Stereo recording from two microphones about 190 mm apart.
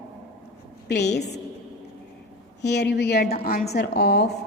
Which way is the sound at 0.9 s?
60° left (ahead or behind).